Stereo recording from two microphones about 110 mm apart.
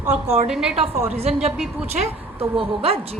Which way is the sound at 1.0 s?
70° right (ahead or behind).